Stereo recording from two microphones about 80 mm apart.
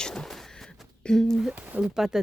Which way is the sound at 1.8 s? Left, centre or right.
Centre.